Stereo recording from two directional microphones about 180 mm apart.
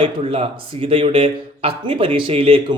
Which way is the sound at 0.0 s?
30° right (ahead or behind).